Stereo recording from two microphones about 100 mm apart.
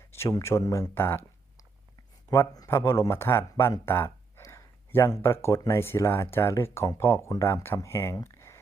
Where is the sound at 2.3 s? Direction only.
35° left (ahead or behind).